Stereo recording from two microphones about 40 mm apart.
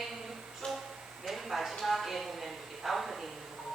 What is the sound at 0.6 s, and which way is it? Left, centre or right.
Music, centre.